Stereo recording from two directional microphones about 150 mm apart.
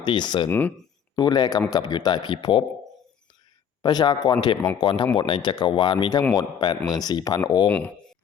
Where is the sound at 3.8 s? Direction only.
30° left (ahead or behind).